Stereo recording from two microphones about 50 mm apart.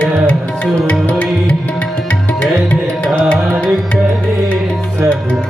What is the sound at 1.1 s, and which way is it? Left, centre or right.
Music, left.